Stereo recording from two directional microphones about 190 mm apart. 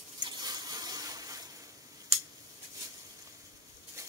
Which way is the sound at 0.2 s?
20° right (ahead or behind).